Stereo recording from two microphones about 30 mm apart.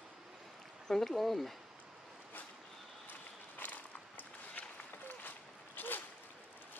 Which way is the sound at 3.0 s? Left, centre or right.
Left.